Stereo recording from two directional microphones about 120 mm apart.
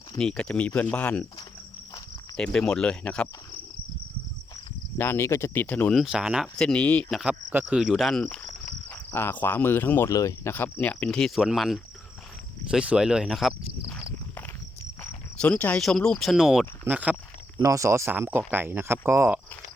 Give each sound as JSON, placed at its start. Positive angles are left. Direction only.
{"t": 0.2, "sound": "speech", "side_deg": 5}
{"t": 2.3, "sound": "speech", "side_deg": 5}
{"t": 4.9, "sound": "speech", "side_deg": 20}
{"t": 5.9, "sound": "speech", "side_deg": -5}
{"t": 6.6, "sound": "speech", "side_deg": 10}
{"t": 7.2, "sound": "speech", "side_deg": -10}
{"t": 8.9, "sound": "speech", "side_deg": 15}
{"t": 10.5, "sound": "speech", "side_deg": 15}
{"t": 11.3, "sound": "speech", "side_deg": 0}
{"t": 15.4, "sound": "speech", "side_deg": 10}
{"t": 17.6, "sound": "speech", "side_deg": -25}